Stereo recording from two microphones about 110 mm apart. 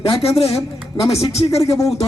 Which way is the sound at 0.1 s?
60° left (ahead or behind).